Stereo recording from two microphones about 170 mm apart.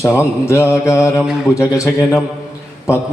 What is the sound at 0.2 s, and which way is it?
Mantra, 15° left (ahead or behind).